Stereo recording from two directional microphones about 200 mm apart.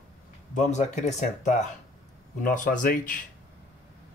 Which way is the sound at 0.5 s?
35° left (ahead or behind).